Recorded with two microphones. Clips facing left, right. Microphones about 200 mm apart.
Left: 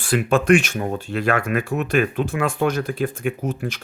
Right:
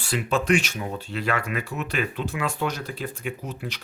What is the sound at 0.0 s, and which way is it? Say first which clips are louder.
Speech: left 6 dB; 55° left (ahead or behind).